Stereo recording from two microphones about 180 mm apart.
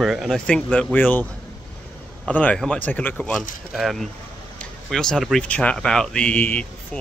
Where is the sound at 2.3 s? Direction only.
5° left (ahead or behind).